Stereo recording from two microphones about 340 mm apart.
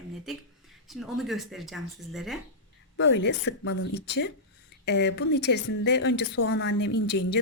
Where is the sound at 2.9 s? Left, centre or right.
Left.